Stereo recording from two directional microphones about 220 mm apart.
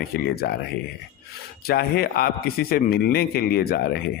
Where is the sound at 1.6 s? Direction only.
45° left (ahead or behind).